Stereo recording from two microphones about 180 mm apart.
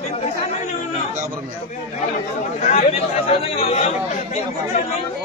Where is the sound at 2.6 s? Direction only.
35° left (ahead or behind).